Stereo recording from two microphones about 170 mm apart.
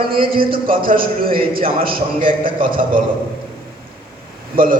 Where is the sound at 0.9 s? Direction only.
55° right (ahead or behind).